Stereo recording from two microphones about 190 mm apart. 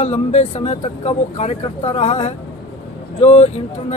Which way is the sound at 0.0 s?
35° left (ahead or behind).